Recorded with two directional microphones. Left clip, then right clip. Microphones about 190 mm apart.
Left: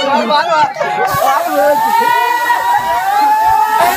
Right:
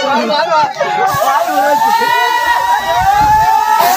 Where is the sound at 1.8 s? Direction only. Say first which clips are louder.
Even; 60° right (ahead or behind).